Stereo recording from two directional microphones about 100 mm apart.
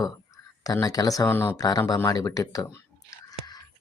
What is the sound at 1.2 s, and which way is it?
Speech, 20° left (ahead or behind).